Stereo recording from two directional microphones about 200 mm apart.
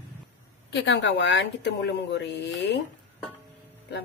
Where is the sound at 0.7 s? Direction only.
65° left (ahead or behind).